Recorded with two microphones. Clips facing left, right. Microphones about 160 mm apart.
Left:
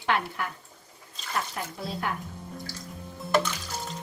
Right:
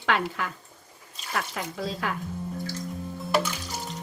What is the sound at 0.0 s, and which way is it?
Speech, 90° right.